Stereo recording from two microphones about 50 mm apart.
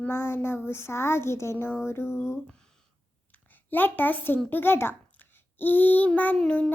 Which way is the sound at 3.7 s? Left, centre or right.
Left.